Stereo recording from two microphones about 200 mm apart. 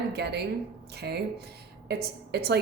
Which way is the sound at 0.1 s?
55° right (ahead or behind).